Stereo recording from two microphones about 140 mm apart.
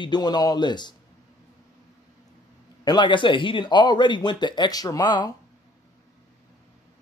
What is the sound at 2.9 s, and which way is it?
Speech, 35° left (ahead or behind).